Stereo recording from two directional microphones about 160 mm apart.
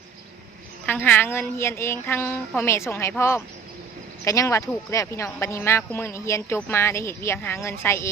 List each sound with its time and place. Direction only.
0.9 s speech: 10° left (ahead or behind)